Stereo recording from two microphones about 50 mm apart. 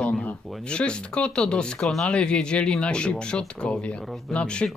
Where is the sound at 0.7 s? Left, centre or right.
Left.